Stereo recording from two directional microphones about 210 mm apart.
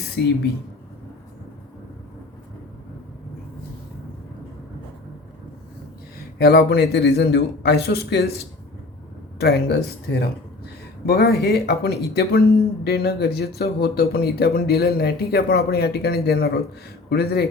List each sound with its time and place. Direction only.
0.2 s speech: 55° left (ahead or behind)
6.4 s speech: 50° left (ahead or behind)
9.4 s speech: 50° left (ahead or behind)